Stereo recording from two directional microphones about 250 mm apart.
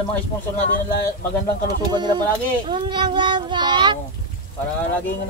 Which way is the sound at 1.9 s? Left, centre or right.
Centre.